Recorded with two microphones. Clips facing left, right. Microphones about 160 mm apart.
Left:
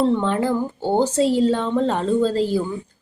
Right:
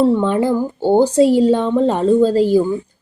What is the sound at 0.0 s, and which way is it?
A woman's voice, 10° right (ahead or behind).